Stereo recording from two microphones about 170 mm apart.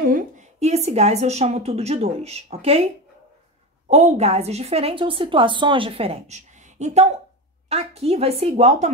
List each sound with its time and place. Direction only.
0.0 s a woman's voice: 50° right (ahead or behind)
3.9 s a woman's voice: 40° right (ahead or behind)